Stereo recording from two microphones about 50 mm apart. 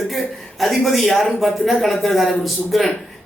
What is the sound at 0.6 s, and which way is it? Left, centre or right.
Speech, centre.